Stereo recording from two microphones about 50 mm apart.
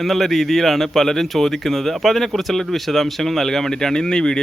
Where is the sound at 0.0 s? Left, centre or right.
Centre.